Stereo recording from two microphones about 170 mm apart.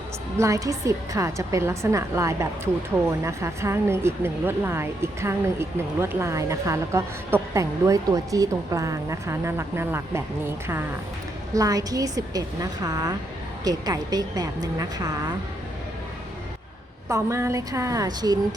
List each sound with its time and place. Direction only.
0.3 s a woman's voice: 20° right (ahead or behind)
17.1 s a woman's voice: 15° right (ahead or behind)